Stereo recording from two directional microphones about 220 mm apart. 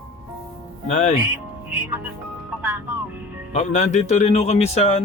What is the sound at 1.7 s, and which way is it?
Music, 10° right (ahead or behind).